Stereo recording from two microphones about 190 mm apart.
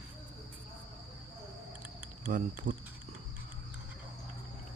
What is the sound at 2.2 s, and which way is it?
Speech, 45° right (ahead or behind).